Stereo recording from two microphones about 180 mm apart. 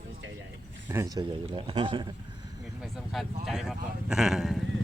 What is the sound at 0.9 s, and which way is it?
A man's voice, 20° right (ahead or behind).